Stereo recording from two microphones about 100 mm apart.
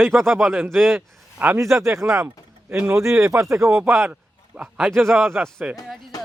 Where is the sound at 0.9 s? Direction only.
20° right (ahead or behind).